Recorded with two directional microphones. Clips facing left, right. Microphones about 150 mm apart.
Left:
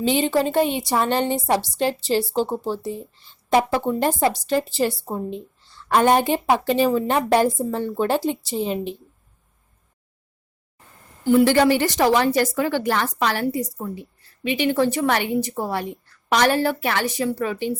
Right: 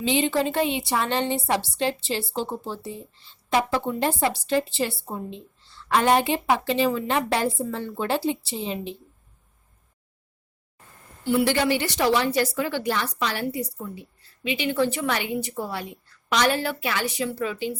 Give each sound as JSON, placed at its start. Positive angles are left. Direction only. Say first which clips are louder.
{"t": 0.0, "sound": "a woman's voice", "louder": "left 3 dB", "side_deg": 40}
{"t": 11.2, "sound": "a woman's voice", "louder": "left 6 dB", "side_deg": 45}